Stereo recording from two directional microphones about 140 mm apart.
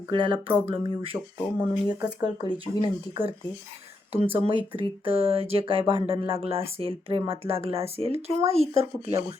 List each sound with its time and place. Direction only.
0.1 s speech: 35° right (ahead or behind)
0.5 s speech: 15° right (ahead or behind)
0.9 s speech: 40° right (ahead or behind)
1.5 s speech: 10° right (ahead or behind)
2.2 s speech: 35° left (ahead or behind)
4.1 s speech: 40° right (ahead or behind)